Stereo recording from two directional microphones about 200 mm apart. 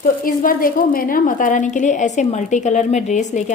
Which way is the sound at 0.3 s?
45° left (ahead or behind).